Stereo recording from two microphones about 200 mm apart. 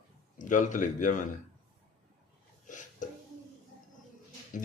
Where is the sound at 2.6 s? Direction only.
40° left (ahead or behind).